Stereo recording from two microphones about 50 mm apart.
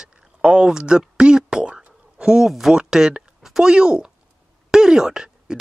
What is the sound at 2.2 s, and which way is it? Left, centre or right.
Speech, centre.